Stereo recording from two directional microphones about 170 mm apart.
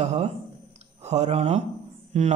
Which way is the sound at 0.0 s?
40° right (ahead or behind).